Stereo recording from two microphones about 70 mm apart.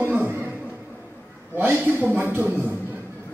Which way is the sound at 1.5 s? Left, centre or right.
Right.